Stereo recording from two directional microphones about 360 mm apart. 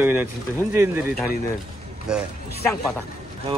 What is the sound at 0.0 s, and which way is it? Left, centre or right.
Speech, centre.